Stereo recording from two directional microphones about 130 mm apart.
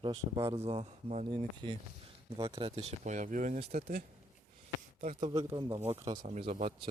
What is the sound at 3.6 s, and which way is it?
Speech, 55° right (ahead or behind).